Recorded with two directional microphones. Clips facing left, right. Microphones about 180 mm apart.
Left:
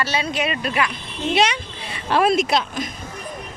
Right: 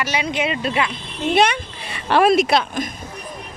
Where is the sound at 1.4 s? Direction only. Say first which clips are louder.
Right 3 dB; 55° right (ahead or behind).